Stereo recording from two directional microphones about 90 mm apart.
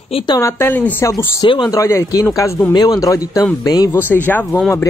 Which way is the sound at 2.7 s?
45° left (ahead or behind).